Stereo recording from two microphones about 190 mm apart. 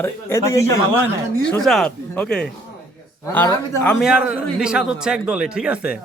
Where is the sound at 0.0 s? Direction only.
15° left (ahead or behind).